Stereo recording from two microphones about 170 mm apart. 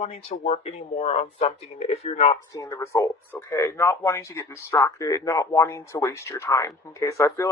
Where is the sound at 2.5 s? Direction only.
20° left (ahead or behind).